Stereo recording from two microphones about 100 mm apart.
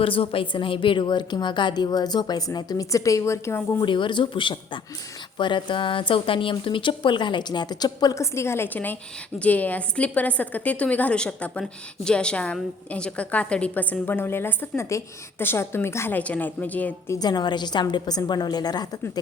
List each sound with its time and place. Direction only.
0.0 s a woman's voice: 65° left (ahead or behind); by 3.8 s 30° left (ahead or behind)
3.8 s a woman's voice: 55° left (ahead or behind)
8.2 s a woman's voice: 25° left (ahead or behind)
17.1 s a woman's voice: 40° left (ahead or behind)